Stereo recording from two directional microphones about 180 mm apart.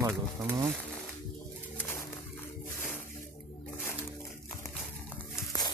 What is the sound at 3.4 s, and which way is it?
Squish, 5° left (ahead or behind).